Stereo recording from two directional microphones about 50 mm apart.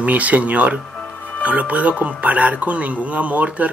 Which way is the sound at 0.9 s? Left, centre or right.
Left.